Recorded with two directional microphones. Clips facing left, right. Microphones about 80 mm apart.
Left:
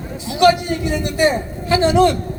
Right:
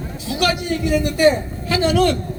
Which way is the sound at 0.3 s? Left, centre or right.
Left.